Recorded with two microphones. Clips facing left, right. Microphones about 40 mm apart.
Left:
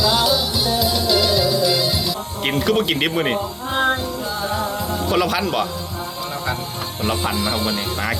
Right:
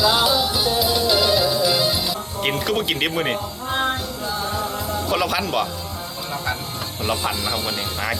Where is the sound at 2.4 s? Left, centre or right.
Centre.